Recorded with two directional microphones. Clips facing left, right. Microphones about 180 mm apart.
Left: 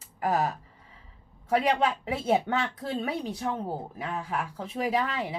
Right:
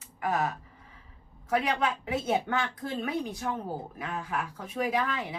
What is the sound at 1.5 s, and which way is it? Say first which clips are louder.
Speech: left 3 dB; 30° left (ahead or behind).